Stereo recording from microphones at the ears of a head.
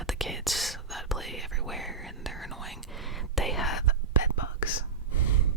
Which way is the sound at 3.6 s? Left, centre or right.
Left.